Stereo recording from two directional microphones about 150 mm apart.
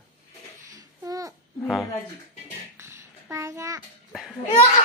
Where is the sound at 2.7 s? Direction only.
20° right (ahead or behind).